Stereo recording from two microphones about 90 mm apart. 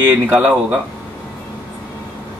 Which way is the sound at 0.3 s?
20° right (ahead or behind).